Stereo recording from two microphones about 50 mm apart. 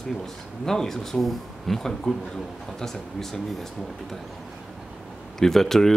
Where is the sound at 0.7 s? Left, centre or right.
Centre.